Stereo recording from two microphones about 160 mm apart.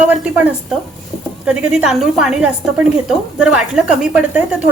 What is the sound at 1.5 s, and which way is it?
A woman's voice, 5° right (ahead or behind).